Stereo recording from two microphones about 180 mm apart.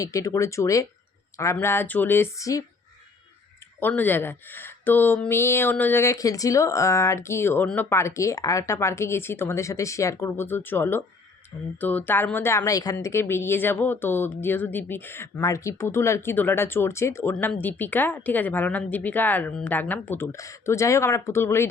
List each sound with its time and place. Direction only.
0.0 s speech: 20° left (ahead or behind)
3.8 s speech: 10° left (ahead or behind)